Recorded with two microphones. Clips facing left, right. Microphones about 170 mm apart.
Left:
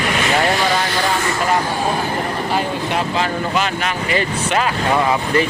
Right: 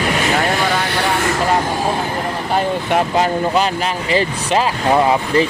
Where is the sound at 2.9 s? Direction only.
40° right (ahead or behind).